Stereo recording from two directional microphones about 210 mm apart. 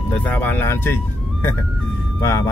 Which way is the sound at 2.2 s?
15° left (ahead or behind).